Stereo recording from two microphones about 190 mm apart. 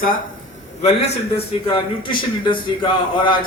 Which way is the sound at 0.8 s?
35° left (ahead or behind).